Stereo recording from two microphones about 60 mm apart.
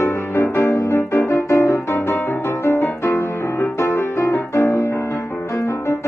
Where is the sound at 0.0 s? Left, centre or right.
Left.